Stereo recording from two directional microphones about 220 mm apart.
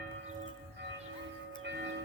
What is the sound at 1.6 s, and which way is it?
Tubular bells, 55° right (ahead or behind).